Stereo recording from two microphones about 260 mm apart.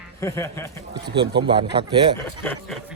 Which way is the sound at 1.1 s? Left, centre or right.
Centre.